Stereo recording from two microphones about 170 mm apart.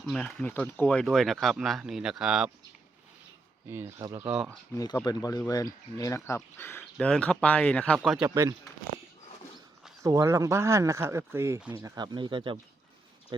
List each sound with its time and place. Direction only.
0.0 s speech: 5° left (ahead or behind)
3.7 s speech: 15° right (ahead or behind)
4.7 s speech: 20° left (ahead or behind); by 8.3 s centre (ahead or behind)
8.3 s speech: 20° right (ahead or behind)
10.0 s speech: 20° right (ahead or behind)